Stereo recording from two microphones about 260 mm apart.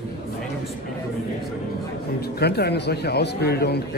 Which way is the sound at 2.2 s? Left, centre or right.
Left.